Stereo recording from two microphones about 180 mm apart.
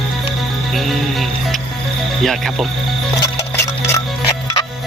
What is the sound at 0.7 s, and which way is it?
Music, centre (ahead or behind).